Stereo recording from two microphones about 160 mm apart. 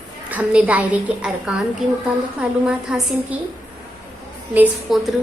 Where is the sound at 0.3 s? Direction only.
10° right (ahead or behind).